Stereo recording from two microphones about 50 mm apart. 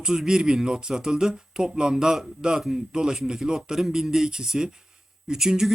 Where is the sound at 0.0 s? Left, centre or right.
Centre.